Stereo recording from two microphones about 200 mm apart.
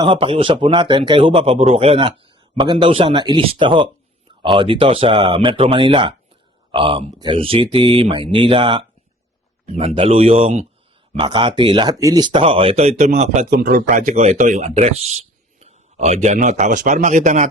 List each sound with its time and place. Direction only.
0.0 s speech: 25° right (ahead or behind)
13.5 s a man's voice: 45° right (ahead or behind)